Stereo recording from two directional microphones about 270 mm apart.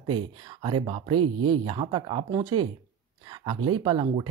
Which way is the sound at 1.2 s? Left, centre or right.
Right.